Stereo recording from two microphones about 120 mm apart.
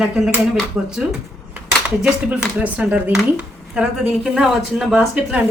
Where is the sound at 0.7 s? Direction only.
5° right (ahead or behind).